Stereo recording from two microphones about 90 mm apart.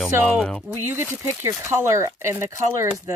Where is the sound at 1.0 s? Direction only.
30° right (ahead or behind).